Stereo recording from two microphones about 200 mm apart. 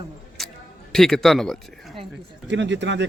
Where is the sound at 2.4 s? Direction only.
65° right (ahead or behind).